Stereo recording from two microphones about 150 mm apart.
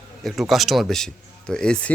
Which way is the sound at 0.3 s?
Centre (ahead or behind).